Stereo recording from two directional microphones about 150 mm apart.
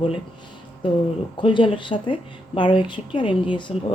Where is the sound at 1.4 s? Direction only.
35° left (ahead or behind).